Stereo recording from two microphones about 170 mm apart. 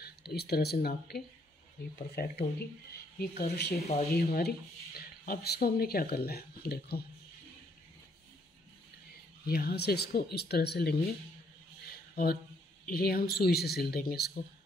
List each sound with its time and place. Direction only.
0.0 s speech: 70° left (ahead or behind)
9.5 s speech: 65° left (ahead or behind)
11.9 s a sound: 60° left (ahead or behind)
12.8 s speech: 65° left (ahead or behind)